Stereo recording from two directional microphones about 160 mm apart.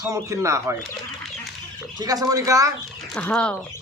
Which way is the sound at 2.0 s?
25° right (ahead or behind).